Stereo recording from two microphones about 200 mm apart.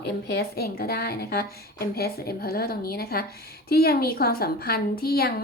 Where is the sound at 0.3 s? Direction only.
50° left (ahead or behind).